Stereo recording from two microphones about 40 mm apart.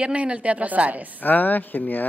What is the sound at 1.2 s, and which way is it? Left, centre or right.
Speech, left.